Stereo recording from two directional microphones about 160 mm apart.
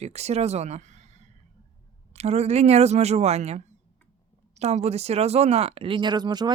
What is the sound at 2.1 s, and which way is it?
Speech, 40° right (ahead or behind).